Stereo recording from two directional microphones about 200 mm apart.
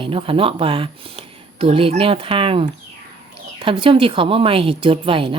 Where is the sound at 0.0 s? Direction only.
25° right (ahead or behind).